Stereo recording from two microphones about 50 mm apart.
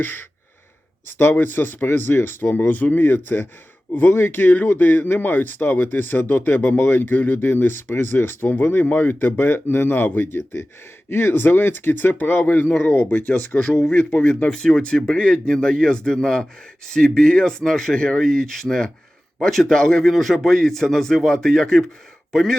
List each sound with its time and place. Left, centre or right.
0.0 s speech: left
7.3 s speech: left
11.1 s speech: left
14.5 s speech: centre